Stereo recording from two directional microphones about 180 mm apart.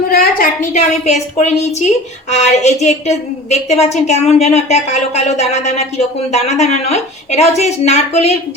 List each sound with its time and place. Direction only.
0.1 s a woman's voice: 55° left (ahead or behind); by 8.4 s 35° left (ahead or behind)